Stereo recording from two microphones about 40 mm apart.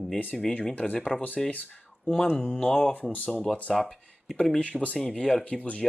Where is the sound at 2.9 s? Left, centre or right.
Left.